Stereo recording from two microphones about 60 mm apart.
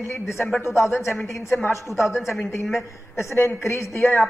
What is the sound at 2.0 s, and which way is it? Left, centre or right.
Speech, centre.